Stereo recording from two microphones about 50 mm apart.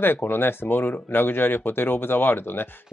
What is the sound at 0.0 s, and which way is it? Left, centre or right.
Speech, left.